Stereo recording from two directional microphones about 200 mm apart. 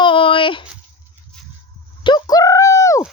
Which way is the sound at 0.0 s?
25° left (ahead or behind).